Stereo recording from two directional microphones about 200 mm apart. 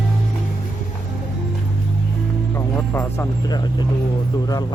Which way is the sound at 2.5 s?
15° left (ahead or behind).